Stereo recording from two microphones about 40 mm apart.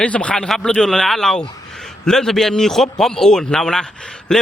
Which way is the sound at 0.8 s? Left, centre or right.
Centre.